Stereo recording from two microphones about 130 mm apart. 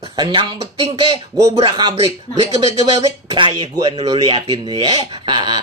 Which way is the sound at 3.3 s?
40° right (ahead or behind).